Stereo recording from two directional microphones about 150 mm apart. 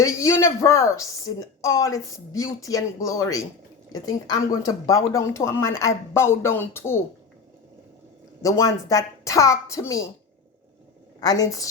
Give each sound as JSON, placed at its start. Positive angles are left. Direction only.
{"t": 0.0, "sound": "a woman's voice", "side_deg": 20}
{"t": 8.4, "sound": "a woman's voice", "side_deg": 25}
{"t": 11.2, "sound": "a woman's voice", "side_deg": 25}